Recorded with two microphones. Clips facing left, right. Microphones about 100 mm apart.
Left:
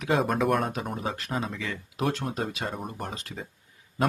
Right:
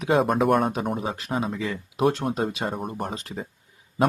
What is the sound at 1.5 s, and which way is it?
Speech, 25° right (ahead or behind).